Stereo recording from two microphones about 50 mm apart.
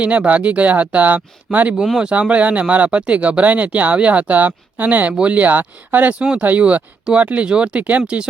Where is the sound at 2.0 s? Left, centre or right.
Right.